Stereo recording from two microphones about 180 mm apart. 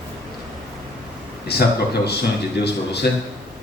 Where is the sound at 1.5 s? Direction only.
65° left (ahead or behind).